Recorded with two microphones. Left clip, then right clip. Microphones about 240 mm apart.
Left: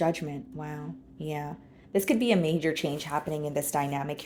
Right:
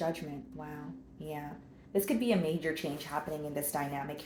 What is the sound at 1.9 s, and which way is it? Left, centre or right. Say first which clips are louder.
Speech: left 5 dB; left.